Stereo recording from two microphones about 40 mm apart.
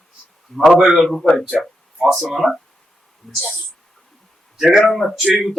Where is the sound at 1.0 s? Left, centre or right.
Centre.